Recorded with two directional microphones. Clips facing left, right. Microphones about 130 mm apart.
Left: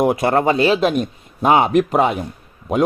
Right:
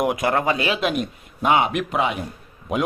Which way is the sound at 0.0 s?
30° left (ahead or behind).